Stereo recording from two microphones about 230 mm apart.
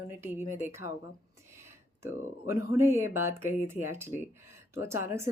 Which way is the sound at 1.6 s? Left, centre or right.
Centre.